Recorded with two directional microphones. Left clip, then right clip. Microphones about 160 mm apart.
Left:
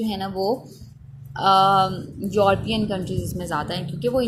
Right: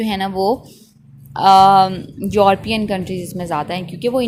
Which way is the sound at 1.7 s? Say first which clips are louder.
Right 7 dB; 70° right (ahead or behind).